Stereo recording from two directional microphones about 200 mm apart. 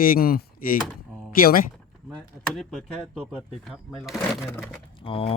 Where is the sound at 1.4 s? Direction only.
45° left (ahead or behind).